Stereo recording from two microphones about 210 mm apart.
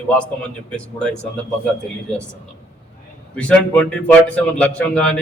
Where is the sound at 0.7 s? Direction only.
5° left (ahead or behind).